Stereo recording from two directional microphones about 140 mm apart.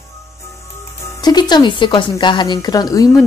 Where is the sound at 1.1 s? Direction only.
30° left (ahead or behind).